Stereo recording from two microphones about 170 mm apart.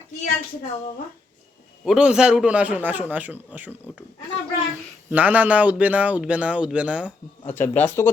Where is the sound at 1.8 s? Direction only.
5° right (ahead or behind).